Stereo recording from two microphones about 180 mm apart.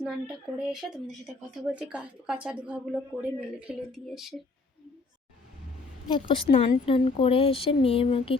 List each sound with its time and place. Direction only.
0.0 s speech: 5° right (ahead or behind)
6.1 s speech: 25° left (ahead or behind)